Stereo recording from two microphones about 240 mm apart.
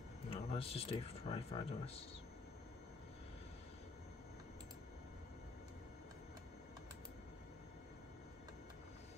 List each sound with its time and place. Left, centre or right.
0.3 s speech: left